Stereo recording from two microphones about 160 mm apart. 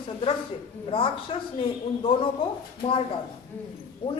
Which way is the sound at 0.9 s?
35° left (ahead or behind).